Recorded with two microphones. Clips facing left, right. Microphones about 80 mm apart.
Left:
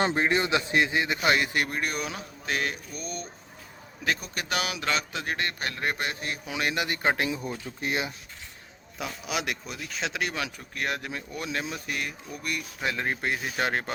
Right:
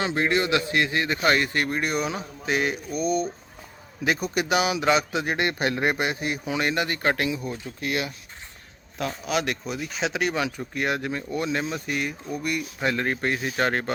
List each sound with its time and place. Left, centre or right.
0.2 s a man's voice: left; by 6.4 s centre
6.4 s speech: centre
7.8 s speech: left
9.0 s a man's voice: centre